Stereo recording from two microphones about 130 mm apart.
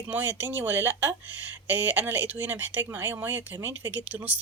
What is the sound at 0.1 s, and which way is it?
Speech, 15° right (ahead or behind).